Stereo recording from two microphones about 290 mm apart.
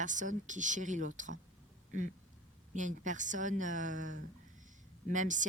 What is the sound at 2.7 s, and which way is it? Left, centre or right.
Speech, right.